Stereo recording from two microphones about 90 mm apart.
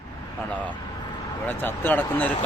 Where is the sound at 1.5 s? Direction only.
20° left (ahead or behind).